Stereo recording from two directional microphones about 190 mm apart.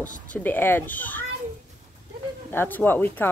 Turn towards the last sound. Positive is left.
turn(degrees=10)  # may be behind; listen again after turning